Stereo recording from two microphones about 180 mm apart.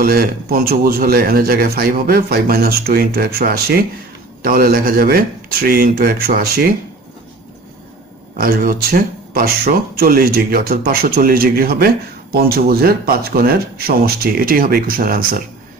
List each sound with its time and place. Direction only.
0.0 s speech: 55° right (ahead or behind)
8.4 s speech: 55° right (ahead or behind)